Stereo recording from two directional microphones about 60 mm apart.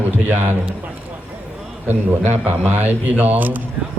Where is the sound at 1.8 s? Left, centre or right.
Right.